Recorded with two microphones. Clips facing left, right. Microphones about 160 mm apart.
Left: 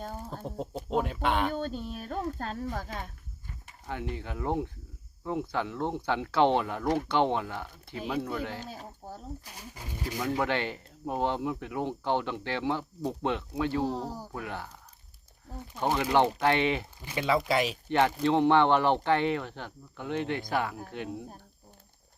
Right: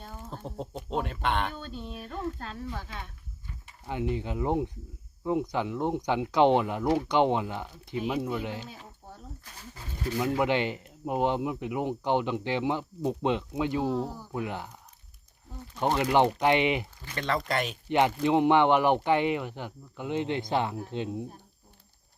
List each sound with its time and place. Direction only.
0.4 s speech: 5° left (ahead or behind)
1.5 s speech: 45° left (ahead or behind)
3.8 s speech: 15° right (ahead or behind)
8.6 s speech: 40° left (ahead or behind)
9.4 s speech: 15° left (ahead or behind)
10.3 s speech: 15° right (ahead or behind)
15.8 s speech: 15° right (ahead or behind)
17.0 s speech: 15° left (ahead or behind)
17.8 s speech: 15° right (ahead or behind)